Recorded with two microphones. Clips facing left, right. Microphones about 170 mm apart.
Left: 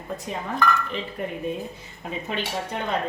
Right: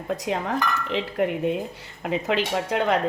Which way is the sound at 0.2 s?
90° right.